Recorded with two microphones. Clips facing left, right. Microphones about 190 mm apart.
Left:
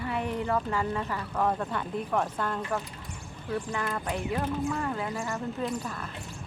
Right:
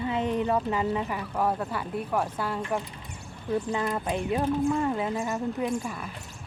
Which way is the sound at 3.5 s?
20° right (ahead or behind).